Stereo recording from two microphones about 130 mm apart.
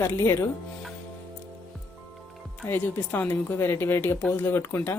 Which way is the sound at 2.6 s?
15° left (ahead or behind).